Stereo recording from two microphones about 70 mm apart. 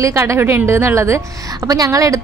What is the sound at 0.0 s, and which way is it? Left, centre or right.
A woman's voice, right.